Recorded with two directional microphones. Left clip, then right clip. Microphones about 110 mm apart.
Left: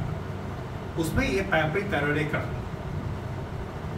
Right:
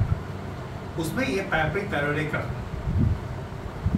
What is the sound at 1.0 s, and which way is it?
Speech, 15° left (ahead or behind).